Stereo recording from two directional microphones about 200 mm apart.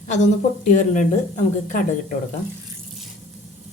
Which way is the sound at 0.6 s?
40° left (ahead or behind).